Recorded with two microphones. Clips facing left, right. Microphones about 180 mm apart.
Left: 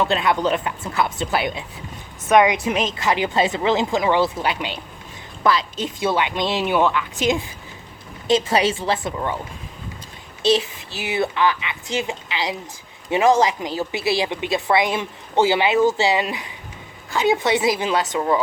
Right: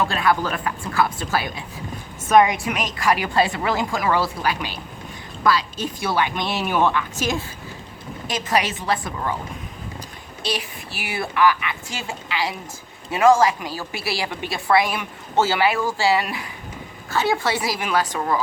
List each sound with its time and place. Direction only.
0.1 s a woman's voice: 20° left (ahead or behind)
10.4 s a woman's voice: 25° left (ahead or behind)